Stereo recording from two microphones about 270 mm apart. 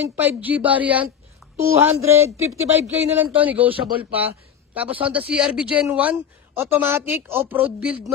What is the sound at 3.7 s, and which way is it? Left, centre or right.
Speech, centre.